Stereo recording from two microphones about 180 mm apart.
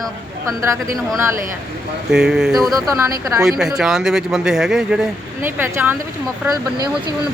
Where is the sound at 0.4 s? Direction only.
15° right (ahead or behind).